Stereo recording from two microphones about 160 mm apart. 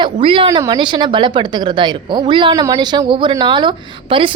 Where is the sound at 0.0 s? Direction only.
30° right (ahead or behind).